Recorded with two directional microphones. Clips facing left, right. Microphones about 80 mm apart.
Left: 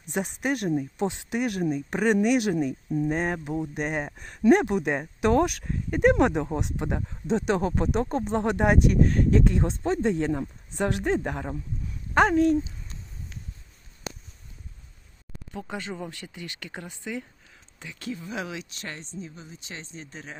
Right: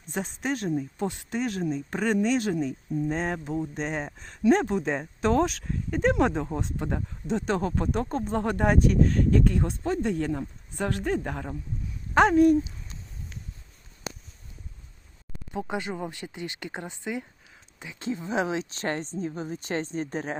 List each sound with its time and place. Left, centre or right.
0.4 s speech: centre
7.5 s speech: centre
12.1 s speech: centre
15.5 s a woman's voice: centre; by 20.3 s right